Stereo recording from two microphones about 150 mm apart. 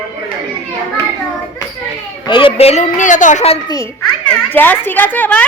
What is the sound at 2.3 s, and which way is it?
A man's voice, 35° left (ahead or behind).